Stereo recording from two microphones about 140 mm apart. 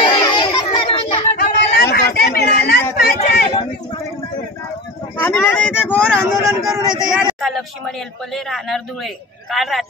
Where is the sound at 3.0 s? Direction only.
90° left.